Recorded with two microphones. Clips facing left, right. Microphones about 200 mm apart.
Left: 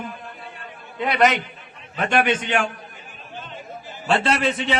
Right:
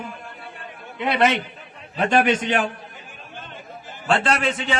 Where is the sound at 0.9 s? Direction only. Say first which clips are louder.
Left 1 dB; 25° right (ahead or behind).